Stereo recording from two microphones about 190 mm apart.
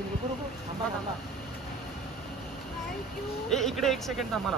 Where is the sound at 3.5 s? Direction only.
Centre (ahead or behind).